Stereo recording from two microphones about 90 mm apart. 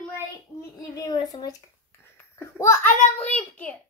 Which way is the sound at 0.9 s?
50° left (ahead or behind).